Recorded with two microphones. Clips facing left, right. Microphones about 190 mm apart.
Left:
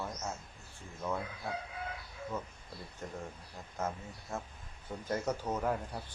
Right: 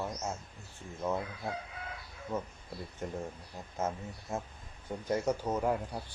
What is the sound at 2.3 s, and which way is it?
Speech, 20° right (ahead or behind).